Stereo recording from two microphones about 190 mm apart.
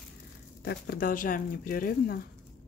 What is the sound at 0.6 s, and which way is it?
Speech, 55° left (ahead or behind).